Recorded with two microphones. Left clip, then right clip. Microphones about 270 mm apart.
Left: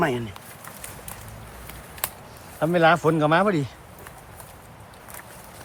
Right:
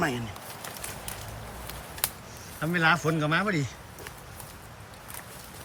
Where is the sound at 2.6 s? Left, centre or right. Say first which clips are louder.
Left 6 dB; centre.